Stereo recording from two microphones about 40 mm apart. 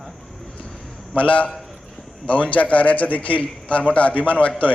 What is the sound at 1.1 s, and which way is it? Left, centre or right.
A man's voice, left.